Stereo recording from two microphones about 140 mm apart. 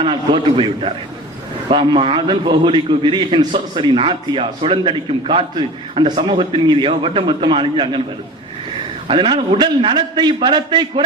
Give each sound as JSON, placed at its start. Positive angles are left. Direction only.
{"t": 0.0, "sound": "a man's voice", "side_deg": -35}
{"t": 9.0, "sound": "a man's voice", "side_deg": -35}